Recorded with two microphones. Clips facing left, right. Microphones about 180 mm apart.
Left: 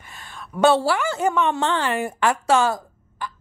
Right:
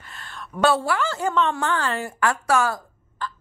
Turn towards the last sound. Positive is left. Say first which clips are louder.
# even
turn(degrees=20)  # may be behind; listen again after turning